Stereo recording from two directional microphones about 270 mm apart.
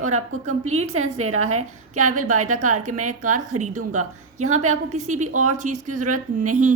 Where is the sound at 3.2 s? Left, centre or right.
Right.